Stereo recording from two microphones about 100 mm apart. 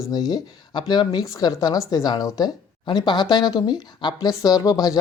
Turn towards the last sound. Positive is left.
turn(degrees=35)  # may be behind; listen again after turning